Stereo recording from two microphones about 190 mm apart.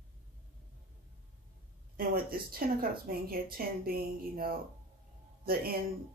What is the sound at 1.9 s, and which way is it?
Speech, 50° right (ahead or behind).